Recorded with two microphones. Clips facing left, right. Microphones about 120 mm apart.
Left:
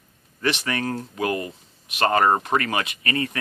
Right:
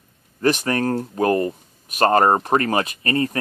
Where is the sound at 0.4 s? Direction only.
40° right (ahead or behind).